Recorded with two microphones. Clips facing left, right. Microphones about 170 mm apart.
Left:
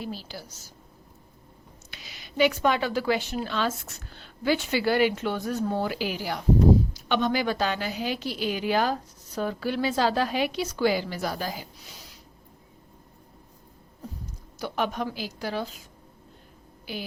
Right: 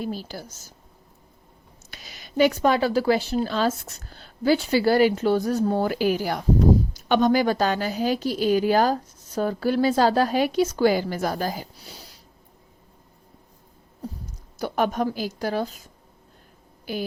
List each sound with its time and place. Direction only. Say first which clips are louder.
0.0 s a woman's voice: right 5 dB; 45° right (ahead or behind)
1.9 s a woman's voice: right 6 dB; 45° right (ahead or behind)
14.6 s a woman's voice: right 5 dB; 45° right (ahead or behind)